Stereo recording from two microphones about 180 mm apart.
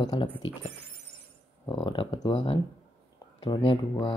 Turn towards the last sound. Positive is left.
turn(degrees=25)  # may be behind; listen again after turning